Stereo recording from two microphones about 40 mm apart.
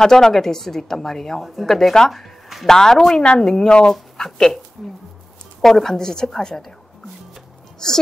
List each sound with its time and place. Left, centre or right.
0.0 s a woman's voice: centre
1.4 s speech: centre; by 3.9 s left
4.2 s a woman's voice: centre
5.6 s a woman's voice: centre
7.8 s a woman's voice: centre